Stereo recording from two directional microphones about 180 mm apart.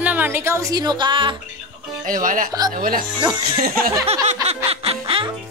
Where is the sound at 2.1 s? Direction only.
50° right (ahead or behind).